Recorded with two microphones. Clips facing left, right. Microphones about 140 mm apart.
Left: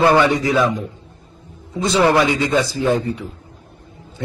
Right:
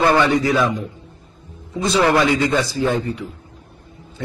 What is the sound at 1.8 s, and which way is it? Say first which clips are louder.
A man's voice: left 1 dB; 25° left (ahead or behind).